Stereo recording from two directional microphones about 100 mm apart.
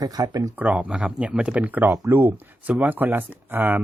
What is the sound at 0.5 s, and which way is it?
Speech, 15° right (ahead or behind).